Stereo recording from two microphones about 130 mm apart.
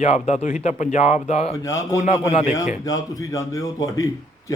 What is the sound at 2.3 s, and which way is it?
Speech, 55° left (ahead or behind).